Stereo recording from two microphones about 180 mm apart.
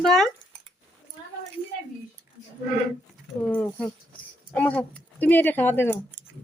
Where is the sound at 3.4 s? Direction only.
5° left (ahead or behind).